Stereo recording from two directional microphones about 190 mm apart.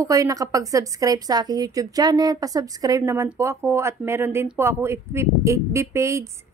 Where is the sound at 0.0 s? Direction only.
15° right (ahead or behind).